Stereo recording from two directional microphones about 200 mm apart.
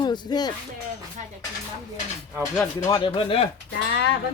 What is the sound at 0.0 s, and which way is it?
Music, 20° left (ahead or behind).